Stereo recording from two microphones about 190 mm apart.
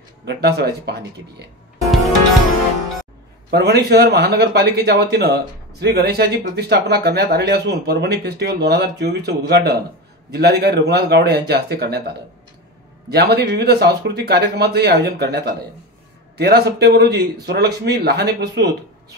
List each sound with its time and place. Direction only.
0.2 s speech: 60° right (ahead or behind)
3.4 s speech: 60° right (ahead or behind)
13.1 s speech: 60° right (ahead or behind)